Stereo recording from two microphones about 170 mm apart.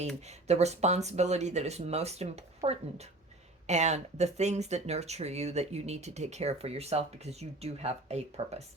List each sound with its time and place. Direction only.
0.3 s speech: 40° right (ahead or behind)